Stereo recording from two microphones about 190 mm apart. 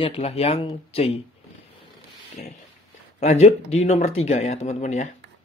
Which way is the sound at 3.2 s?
35° left (ahead or behind).